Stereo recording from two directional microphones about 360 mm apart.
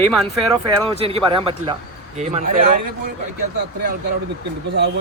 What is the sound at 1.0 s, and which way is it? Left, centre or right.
Speech, centre.